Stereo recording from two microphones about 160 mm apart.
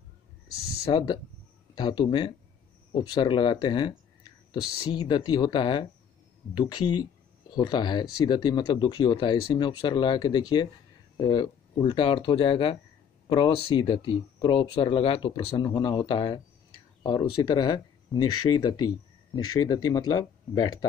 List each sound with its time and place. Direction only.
0.8 s speech: 30° left (ahead or behind)